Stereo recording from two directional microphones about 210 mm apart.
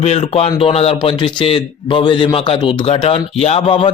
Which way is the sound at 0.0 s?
30° left (ahead or behind).